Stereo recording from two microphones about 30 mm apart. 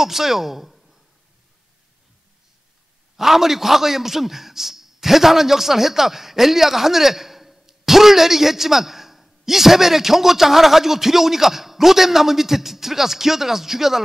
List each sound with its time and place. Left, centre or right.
0.0 s a woman's voice: centre
3.2 s a man's voice: centre